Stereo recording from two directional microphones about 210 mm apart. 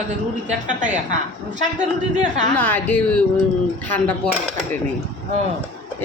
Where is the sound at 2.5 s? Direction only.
10° left (ahead or behind).